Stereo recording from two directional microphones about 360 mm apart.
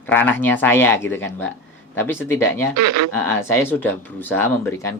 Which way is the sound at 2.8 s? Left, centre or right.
Right.